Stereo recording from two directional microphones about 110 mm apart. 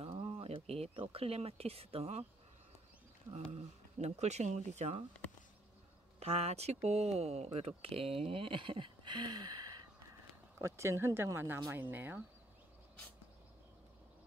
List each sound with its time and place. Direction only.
0.0 s speech: 60° right (ahead or behind); by 2.2 s 75° right (ahead or behind)
3.5 s speech: 90° right
6.1 s speech: 75° right (ahead or behind); by 9.8 s 40° right (ahead or behind)
10.6 s speech: 25° right (ahead or behind)